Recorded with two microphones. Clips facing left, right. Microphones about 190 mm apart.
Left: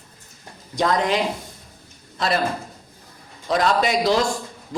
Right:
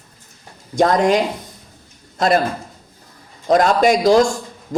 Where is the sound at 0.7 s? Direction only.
45° right (ahead or behind).